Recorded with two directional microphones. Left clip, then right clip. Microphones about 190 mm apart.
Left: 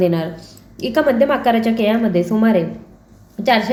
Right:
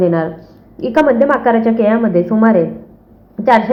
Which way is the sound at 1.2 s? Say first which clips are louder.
Right 3 dB; centre (ahead or behind).